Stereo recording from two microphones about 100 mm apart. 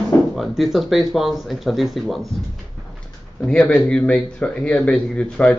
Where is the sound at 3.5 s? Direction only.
10° left (ahead or behind).